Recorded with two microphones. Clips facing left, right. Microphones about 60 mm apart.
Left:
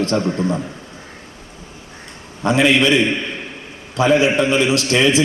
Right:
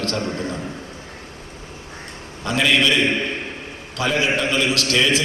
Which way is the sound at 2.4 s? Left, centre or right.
Left.